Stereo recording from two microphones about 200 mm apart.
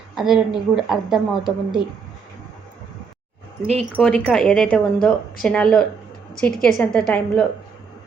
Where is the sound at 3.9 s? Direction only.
5° left (ahead or behind).